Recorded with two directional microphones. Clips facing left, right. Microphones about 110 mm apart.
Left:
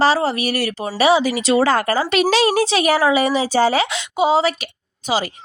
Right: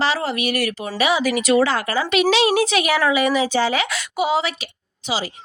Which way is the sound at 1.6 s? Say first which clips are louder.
Left 4 dB; 40° left (ahead or behind).